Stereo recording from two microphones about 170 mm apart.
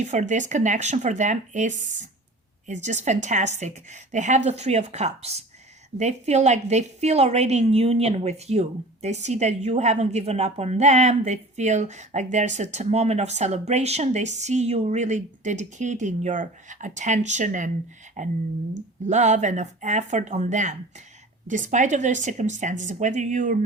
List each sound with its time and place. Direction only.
0.0 s a woman's voice: 45° right (ahead or behind)